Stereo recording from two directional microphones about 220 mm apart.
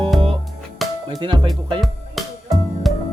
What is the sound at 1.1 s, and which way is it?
Music, 20° right (ahead or behind).